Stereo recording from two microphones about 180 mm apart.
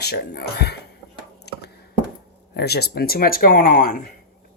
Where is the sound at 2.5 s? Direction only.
65° left (ahead or behind).